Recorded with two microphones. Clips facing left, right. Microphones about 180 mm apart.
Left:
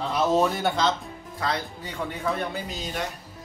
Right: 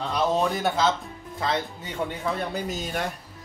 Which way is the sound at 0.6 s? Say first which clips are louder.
Right 1 dB; 5° right (ahead or behind).